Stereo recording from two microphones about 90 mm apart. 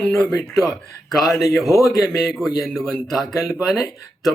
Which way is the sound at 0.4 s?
5° left (ahead or behind).